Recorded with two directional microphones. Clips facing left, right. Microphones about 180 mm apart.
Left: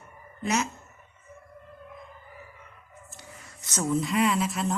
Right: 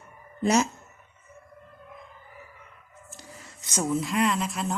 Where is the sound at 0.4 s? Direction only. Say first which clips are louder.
Right 5 dB; 35° right (ahead or behind).